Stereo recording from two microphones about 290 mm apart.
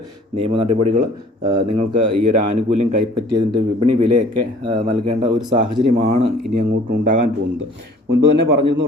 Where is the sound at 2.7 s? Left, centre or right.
Right.